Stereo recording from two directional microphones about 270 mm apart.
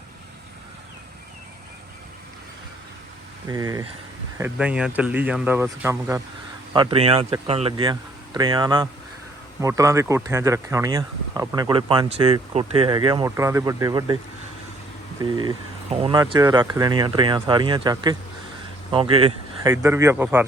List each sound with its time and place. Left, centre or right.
3.5 s speech: centre
15.2 s speech: centre